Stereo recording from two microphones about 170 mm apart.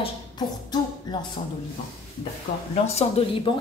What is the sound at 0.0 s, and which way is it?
Beatboxing, 25° left (ahead or behind).